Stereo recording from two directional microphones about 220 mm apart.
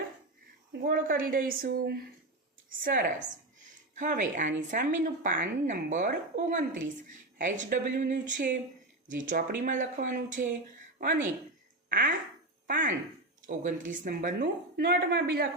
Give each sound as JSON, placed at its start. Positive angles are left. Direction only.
{"t": 0.8, "sound": "a woman's voice", "side_deg": -40}